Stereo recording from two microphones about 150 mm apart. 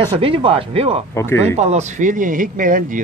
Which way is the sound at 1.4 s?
50° right (ahead or behind).